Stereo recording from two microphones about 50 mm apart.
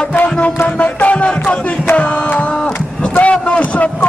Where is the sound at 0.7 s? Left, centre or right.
Left.